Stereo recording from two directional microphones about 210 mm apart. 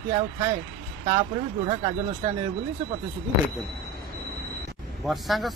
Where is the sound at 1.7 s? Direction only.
25° right (ahead or behind).